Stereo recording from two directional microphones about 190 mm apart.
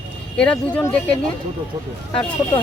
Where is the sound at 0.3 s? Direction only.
5° left (ahead or behind).